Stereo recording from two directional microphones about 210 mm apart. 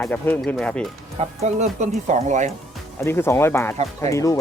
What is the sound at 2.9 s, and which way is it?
Speech, 10° left (ahead or behind).